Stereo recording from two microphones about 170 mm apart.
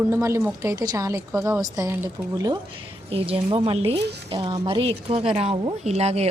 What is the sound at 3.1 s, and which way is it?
Speech, 35° right (ahead or behind).